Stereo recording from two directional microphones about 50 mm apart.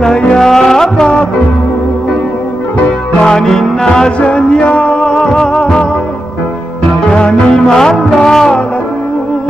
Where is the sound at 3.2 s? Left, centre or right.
Centre.